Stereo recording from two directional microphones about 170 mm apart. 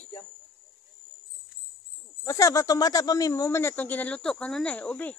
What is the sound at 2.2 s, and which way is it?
Speech, 20° left (ahead or behind).